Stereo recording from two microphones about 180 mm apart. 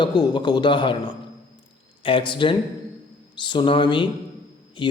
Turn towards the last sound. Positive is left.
turn(degrees=25)  # may be behind; listen again after turning